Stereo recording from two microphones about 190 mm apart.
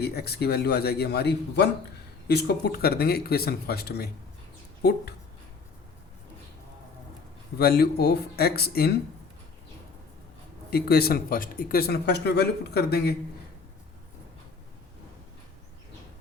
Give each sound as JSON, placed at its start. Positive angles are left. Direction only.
{"t": 0.0, "sound": "speech", "side_deg": 55}
{"t": 7.6, "sound": "speech", "side_deg": 55}
{"t": 10.7, "sound": "speech", "side_deg": 55}